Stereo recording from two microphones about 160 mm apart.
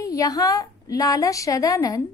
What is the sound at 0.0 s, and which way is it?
A woman's voice, 20° left (ahead or behind).